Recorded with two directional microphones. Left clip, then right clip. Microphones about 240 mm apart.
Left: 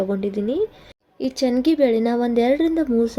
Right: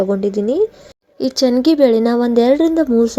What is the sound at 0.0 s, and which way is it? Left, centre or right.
Speech, centre.